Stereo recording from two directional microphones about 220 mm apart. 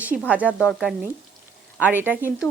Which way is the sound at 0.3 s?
5° right (ahead or behind).